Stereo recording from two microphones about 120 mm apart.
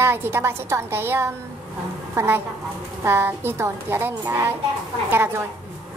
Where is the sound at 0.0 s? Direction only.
20° right (ahead or behind).